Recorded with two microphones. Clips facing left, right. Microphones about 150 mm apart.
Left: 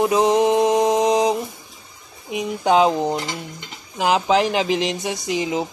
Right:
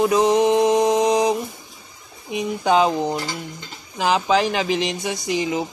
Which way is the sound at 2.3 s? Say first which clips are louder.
Left 1 dB; 15° left (ahead or behind).